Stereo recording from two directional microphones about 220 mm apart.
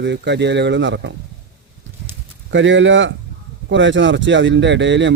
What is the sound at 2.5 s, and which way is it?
Speech, 55° right (ahead or behind).